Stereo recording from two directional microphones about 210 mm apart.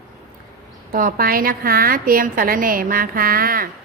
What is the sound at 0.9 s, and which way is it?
A woman's voice, 45° right (ahead or behind).